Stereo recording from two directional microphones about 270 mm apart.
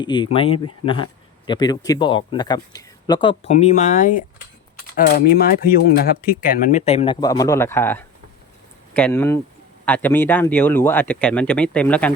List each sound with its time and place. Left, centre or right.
0.0 s speech: centre